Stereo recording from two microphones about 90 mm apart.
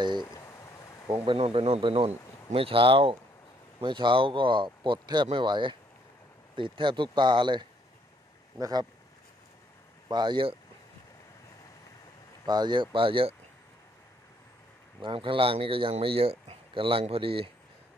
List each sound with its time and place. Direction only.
0.3 s a sound: 35° left (ahead or behind)
1.2 s speech: 75° right (ahead or behind)
3.8 s speech: 60° right (ahead or behind)
8.5 s speech: 40° right (ahead or behind)
10.0 s speech: 55° right (ahead or behind); by 10.6 s 70° right (ahead or behind)
12.4 s speech: 55° right (ahead or behind); by 13.3 s 70° right (ahead or behind)
15.0 s speech: 70° right (ahead or behind); by 17.5 s 90° right